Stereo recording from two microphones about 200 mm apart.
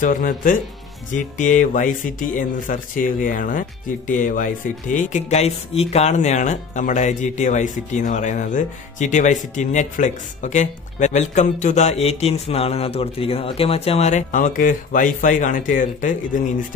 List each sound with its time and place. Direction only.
0.0 s speech: 45° left (ahead or behind)